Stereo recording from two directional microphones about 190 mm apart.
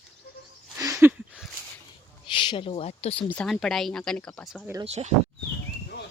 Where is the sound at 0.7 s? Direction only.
15° right (ahead or behind).